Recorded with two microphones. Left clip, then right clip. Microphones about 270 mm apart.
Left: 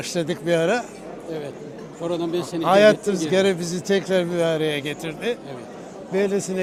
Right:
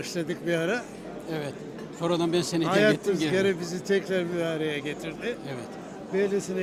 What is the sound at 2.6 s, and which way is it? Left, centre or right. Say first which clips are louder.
Speech: left 9 dB; left.